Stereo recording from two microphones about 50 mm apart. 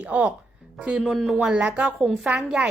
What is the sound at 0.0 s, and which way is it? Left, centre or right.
A woman's voice, right.